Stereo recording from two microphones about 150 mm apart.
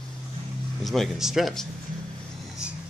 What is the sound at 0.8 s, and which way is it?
Speech, centre (ahead or behind).